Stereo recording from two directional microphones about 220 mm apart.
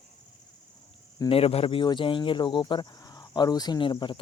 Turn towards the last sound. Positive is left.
turn(degrees=20)  # may be behind; listen again after turning